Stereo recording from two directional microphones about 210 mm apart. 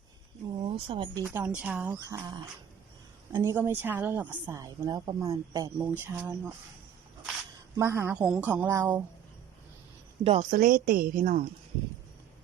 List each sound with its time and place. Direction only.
0.6 s speech: 25° right (ahead or behind)
1.2 s speech: 5° right (ahead or behind)
7.8 s speech: 10° right (ahead or behind)
10.2 s speech: 35° right (ahead or behind)